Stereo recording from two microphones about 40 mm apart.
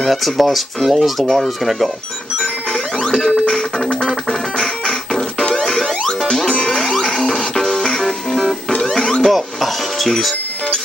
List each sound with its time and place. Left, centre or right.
0.0 s speech: centre
2.4 s music: centre
8.4 s music: centre
8.7 s music: centre
9.3 s music: centre